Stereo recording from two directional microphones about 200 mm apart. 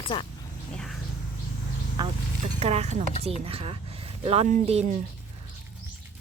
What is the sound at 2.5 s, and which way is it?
Speech, 30° right (ahead or behind).